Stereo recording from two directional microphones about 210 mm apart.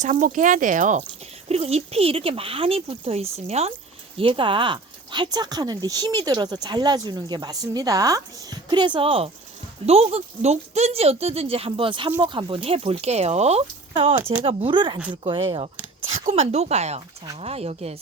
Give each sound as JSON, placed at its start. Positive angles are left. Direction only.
{"t": 0.0, "sound": "speech", "side_deg": -35}